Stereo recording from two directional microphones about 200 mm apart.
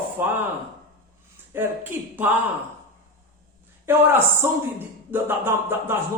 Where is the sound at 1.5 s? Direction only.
10° right (ahead or behind).